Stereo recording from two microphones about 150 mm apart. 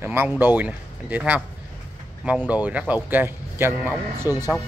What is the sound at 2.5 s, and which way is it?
A man's voice, 10° right (ahead or behind).